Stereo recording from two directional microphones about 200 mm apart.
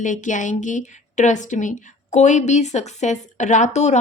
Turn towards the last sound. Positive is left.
turn(degrees=35)  # may be behind; listen again after turning